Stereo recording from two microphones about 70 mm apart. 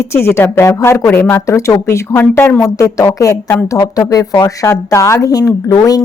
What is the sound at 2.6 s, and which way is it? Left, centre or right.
Speech, left.